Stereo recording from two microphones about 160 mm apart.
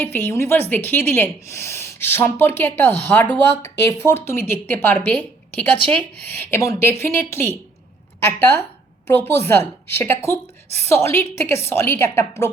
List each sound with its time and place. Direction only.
0.0 s a woman's voice: 15° left (ahead or behind)